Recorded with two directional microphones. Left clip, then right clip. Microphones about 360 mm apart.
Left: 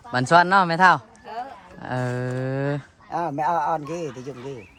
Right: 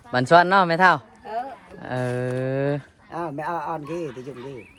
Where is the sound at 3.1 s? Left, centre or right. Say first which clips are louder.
Left 5 dB; left.